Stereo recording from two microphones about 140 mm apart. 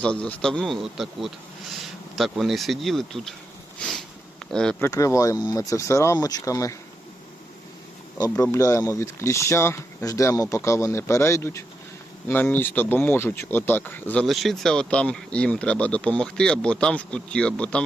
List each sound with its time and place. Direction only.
0.0 s speech: 10° left (ahead or behind)
3.8 s a sound: 5° left (ahead or behind)
4.5 s speech: 5° left (ahead or behind)
4.8 s speech: 20° left (ahead or behind)
8.2 s speech: 20° left (ahead or behind)
14.3 s speech: centre (ahead or behind)